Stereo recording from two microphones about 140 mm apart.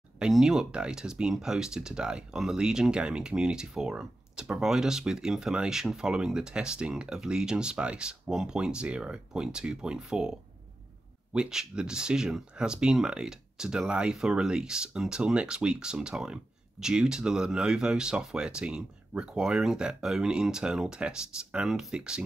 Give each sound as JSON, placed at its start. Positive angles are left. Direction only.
{"t": 0.2, "sound": "speech", "side_deg": -5}